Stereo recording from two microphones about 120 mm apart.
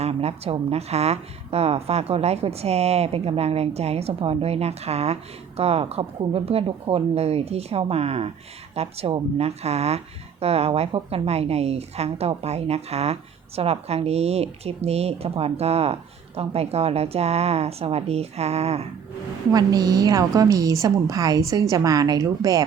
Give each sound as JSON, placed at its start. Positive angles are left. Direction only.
{"t": 0.0, "sound": "speech", "side_deg": -60}
{"t": 19.5, "sound": "a woman's voice", "side_deg": -30}